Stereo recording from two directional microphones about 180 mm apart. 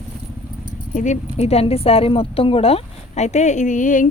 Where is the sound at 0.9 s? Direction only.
40° left (ahead or behind).